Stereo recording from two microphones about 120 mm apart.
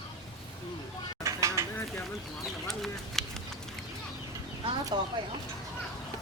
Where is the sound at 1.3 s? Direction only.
25° right (ahead or behind).